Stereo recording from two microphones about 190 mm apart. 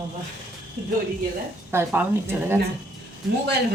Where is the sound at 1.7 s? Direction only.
10° right (ahead or behind).